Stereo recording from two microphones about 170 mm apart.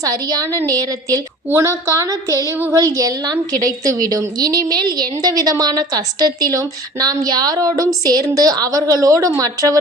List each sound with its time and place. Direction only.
0.0 s a woman's voice: 20° right (ahead or behind)